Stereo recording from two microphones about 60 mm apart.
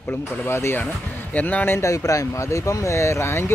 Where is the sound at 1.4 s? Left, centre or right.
Left.